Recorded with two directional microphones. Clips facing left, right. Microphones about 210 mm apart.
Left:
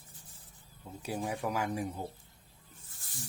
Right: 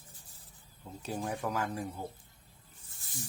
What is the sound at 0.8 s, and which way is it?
Speech, 5° left (ahead or behind).